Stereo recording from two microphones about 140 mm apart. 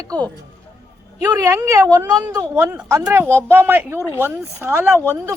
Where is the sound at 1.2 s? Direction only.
20° right (ahead or behind).